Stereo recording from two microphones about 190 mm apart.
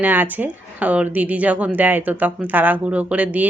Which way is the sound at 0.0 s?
10° right (ahead or behind).